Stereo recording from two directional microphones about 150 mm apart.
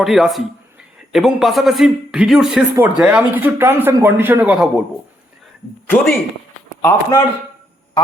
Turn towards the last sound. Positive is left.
turn(degrees=20)  # may be behind; listen again after turning